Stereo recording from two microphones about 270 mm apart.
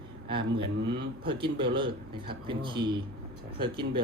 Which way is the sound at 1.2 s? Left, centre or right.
Centre.